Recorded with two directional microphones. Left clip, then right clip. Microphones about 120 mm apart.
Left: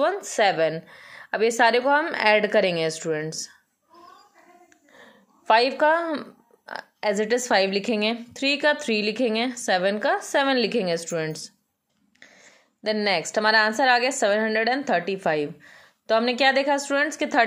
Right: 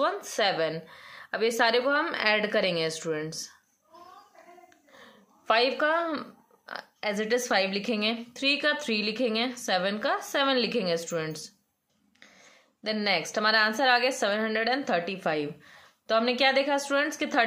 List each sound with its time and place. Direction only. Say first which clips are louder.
0.0 s speech: left 5 dB; 45° left (ahead or behind)
4.9 s a woman's voice: left 4 dB; 40° left (ahead or behind)